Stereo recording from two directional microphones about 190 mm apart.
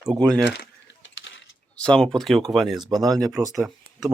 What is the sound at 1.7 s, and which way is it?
Speech, 5° left (ahead or behind).